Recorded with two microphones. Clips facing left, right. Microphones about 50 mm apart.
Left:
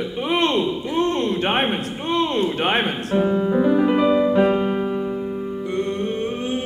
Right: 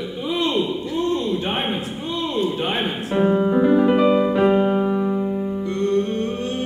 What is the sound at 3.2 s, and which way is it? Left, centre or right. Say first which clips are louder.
Music: right 2 dB; centre.